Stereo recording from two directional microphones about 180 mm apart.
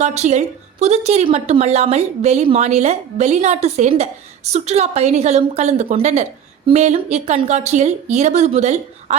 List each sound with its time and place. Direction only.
0.0 s a woman's voice: 40° right (ahead or behind)